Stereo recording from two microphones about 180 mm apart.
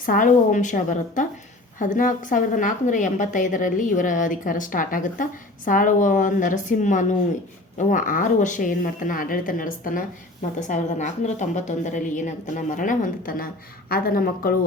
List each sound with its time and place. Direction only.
0.0 s a woman's voice: 50° left (ahead or behind)